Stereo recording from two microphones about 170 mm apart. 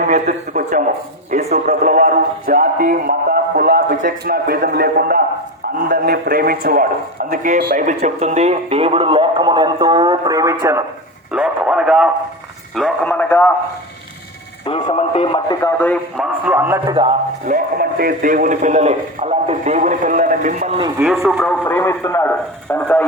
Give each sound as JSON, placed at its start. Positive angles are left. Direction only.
{"t": 0.1, "sound": "a man's voice", "side_deg": -50}
{"t": 11.3, "sound": "speech", "side_deg": -5}
{"t": 12.7, "sound": "a man's voice", "side_deg": 5}
{"t": 14.7, "sound": "speech", "side_deg": 25}
{"t": 15.8, "sound": "a man's voice", "side_deg": 10}
{"t": 16.2, "sound": "speech", "side_deg": -10}
{"t": 17.4, "sound": "a man's voice", "side_deg": -55}
{"t": 21.0, "sound": "a man's voice", "side_deg": 0}